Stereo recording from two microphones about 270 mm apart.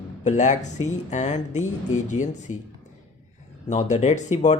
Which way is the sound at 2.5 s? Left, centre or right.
Left.